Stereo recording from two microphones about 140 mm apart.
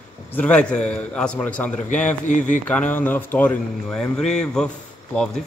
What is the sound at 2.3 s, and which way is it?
Speech, 65° left (ahead or behind).